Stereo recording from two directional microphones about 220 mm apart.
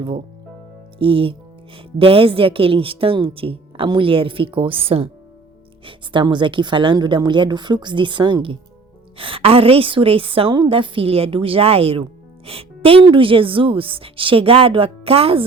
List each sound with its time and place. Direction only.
0.9 s speech: 25° right (ahead or behind)